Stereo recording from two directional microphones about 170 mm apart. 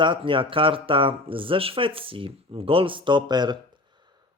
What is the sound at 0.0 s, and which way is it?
Speech, 30° right (ahead or behind).